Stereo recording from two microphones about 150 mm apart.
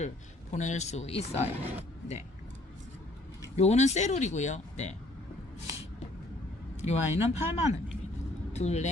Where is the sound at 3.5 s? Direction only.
50° left (ahead or behind).